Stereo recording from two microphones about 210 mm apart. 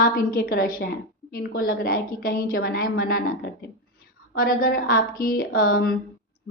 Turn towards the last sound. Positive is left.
turn(degrees=45)  # may be behind; listen again after turning